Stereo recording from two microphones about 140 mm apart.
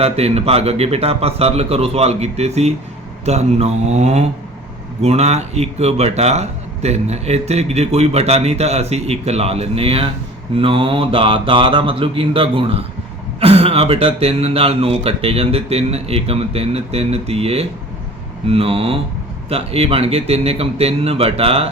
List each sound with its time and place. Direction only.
0.0 s speech: 45° right (ahead or behind)
10.6 s mantra: 40° right (ahead or behind)
13.4 s speech: 45° right (ahead or behind)